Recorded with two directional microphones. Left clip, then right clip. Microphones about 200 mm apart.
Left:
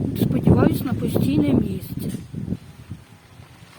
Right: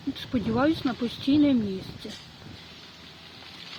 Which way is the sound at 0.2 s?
20° left (ahead or behind).